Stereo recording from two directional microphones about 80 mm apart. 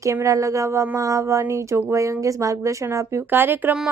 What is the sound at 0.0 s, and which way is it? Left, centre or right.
Speech, right.